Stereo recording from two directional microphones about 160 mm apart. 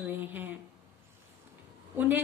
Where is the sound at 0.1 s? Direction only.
10° right (ahead or behind).